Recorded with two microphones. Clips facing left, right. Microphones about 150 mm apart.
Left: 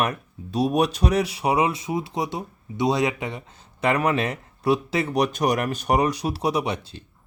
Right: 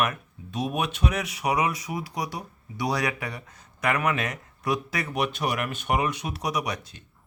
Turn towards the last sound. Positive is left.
turn(degrees=30)  # may be behind; listen again after turning